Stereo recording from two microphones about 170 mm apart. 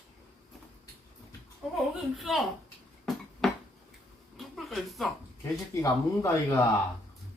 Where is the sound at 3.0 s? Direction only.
Centre (ahead or behind).